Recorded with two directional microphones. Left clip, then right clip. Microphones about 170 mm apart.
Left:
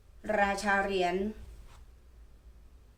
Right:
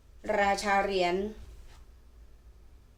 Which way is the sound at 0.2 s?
30° right (ahead or behind).